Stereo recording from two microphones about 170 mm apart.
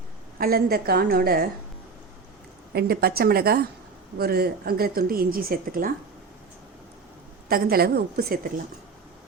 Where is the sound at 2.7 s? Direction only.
65° right (ahead or behind).